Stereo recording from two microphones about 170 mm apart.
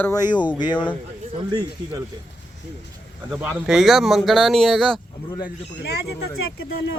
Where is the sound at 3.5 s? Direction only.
Centre (ahead or behind).